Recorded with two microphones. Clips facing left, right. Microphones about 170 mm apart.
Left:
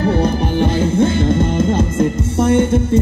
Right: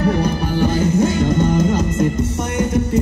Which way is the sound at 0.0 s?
30° left (ahead or behind).